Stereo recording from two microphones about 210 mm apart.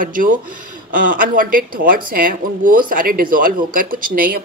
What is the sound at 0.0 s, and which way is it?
A woman's voice, 40° right (ahead or behind).